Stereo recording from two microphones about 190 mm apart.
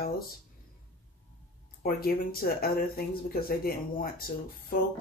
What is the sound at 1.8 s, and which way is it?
Speech, 50° left (ahead or behind).